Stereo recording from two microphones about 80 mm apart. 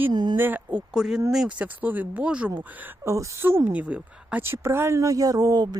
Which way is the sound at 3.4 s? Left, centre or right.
Right.